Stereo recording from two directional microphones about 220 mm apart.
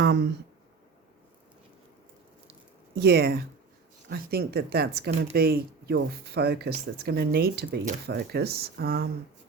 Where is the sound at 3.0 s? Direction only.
45° right (ahead or behind).